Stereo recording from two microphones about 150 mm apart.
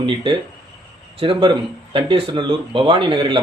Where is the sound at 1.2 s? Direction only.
35° right (ahead or behind).